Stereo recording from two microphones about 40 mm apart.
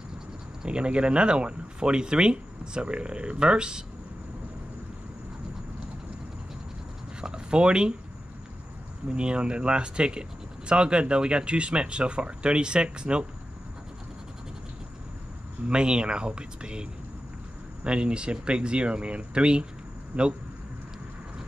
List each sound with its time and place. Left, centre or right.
0.7 s speech: right
7.2 s a sound: right
9.0 s speech: right
15.7 s speech: right
17.8 s speech: right
20.1 s speech: right